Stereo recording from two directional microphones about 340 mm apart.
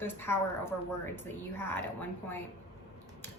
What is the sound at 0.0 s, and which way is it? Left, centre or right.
A woman's voice, centre.